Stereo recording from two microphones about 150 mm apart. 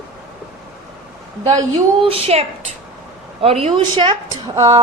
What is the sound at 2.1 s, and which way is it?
Speech, 40° right (ahead or behind).